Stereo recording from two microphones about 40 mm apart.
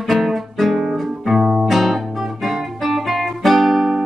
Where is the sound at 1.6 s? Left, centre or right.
Centre.